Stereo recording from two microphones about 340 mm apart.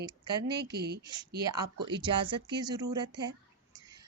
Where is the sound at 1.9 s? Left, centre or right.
Centre.